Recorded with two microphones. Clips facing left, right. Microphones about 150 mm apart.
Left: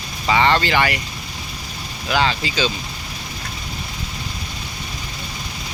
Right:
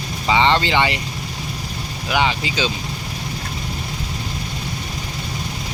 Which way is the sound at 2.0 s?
15° right (ahead or behind).